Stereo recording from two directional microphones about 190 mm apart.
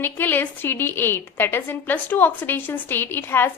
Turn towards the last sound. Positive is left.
turn(degrees=10)  # may be behind; listen again after turning